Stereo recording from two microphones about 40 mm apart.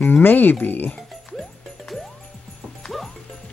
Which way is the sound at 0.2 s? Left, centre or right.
Left.